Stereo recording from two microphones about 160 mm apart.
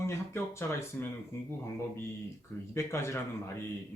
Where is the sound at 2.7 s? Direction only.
15° left (ahead or behind).